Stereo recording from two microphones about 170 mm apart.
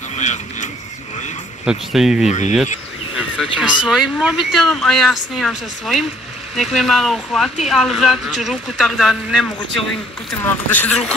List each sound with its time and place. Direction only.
0.2 s speech: 45° left (ahead or behind)
1.7 s speech: centre (ahead or behind)